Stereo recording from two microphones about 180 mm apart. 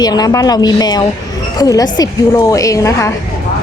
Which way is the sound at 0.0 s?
20° left (ahead or behind).